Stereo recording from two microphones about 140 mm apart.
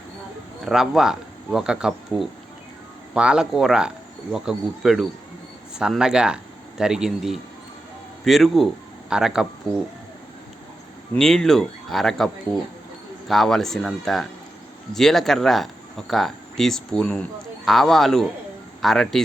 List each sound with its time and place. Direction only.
0.6 s speech: 5° right (ahead or behind)
11.1 s speech: 5° left (ahead or behind)